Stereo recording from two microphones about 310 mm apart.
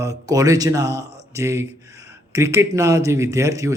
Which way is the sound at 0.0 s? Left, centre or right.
Centre.